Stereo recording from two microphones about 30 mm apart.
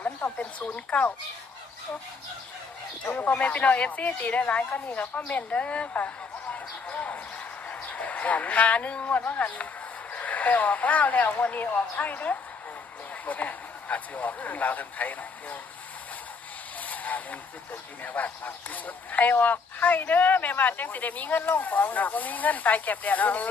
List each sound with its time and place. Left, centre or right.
0.9 s speech: left
3.1 s speech: left
3.4 s speech: left
5.1 s speech: left
5.5 s speech: left
6.8 s a sound: left
9.0 s speech: left
16.8 s vehicle: left
18.0 s speech: left